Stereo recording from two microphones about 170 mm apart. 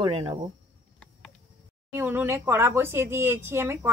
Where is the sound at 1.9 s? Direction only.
10° right (ahead or behind).